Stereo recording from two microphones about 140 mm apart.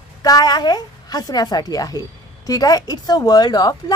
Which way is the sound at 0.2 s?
30° left (ahead or behind).